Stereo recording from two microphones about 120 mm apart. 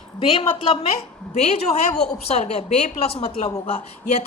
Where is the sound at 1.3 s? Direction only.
65° left (ahead or behind).